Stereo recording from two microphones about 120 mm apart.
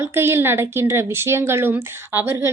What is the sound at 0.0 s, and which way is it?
Speech, 20° right (ahead or behind).